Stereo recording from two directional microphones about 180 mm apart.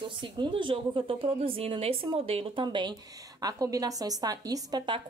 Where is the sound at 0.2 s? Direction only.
25° right (ahead or behind).